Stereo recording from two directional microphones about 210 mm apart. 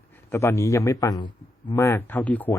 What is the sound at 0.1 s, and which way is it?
A man's voice, 10° left (ahead or behind).